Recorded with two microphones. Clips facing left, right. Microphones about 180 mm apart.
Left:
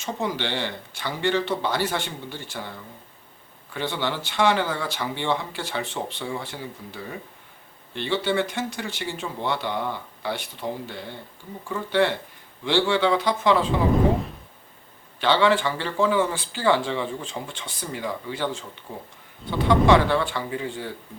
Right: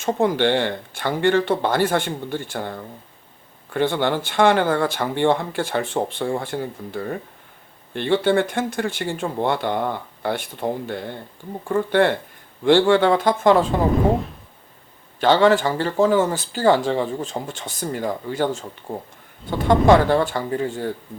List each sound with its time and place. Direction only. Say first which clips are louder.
0.0 s speech: right 9 dB; 50° right (ahead or behind)
15.2 s speech: right 5 dB; 45° right (ahead or behind)